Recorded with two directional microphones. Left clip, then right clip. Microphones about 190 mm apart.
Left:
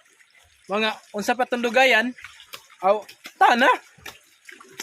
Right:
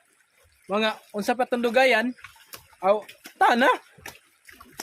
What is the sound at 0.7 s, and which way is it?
Speech, centre (ahead or behind).